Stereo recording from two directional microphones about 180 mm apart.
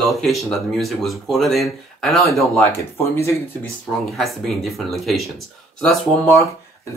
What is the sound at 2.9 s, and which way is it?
Speech, 15° left (ahead or behind).